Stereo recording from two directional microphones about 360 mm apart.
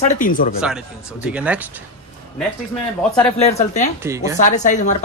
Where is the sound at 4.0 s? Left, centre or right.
Centre.